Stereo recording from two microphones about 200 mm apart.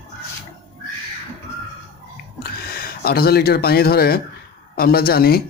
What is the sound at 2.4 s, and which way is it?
Speech, 50° left (ahead or behind).